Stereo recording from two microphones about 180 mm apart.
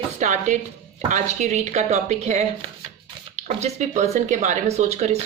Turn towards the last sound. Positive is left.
turn(degrees=-35)  # may be behind; listen again after turning